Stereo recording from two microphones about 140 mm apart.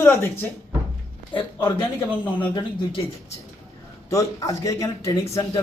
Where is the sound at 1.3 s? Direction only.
35° left (ahead or behind).